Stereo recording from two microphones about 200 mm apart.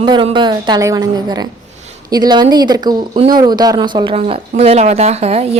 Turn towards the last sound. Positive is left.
turn(degrees=-30)  # may be behind; listen again after turning